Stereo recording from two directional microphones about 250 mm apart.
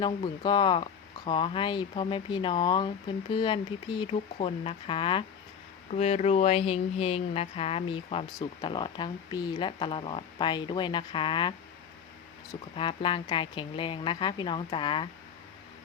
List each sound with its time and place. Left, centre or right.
0.0 s speech: centre
12.7 s speech: centre